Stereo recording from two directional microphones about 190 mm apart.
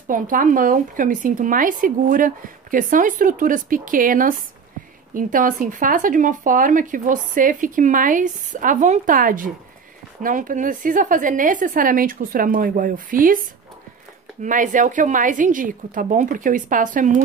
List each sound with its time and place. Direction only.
0.1 s speech: 45° right (ahead or behind)
14.4 s speech: 45° right (ahead or behind)